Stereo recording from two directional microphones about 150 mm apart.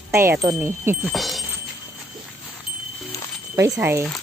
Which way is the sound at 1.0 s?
Centre (ahead or behind).